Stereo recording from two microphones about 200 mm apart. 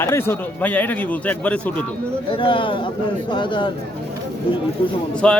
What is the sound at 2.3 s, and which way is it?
Speech, 25° left (ahead or behind).